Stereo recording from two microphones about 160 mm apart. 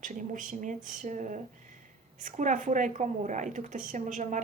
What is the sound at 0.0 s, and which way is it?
A woman's voice, 50° right (ahead or behind).